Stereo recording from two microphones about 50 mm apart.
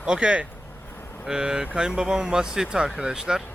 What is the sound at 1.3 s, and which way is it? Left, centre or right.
Speech, centre.